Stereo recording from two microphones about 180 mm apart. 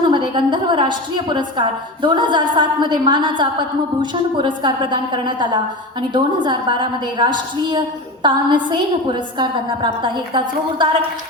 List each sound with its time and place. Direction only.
0.1 s a woman's voice: 25° right (ahead or behind)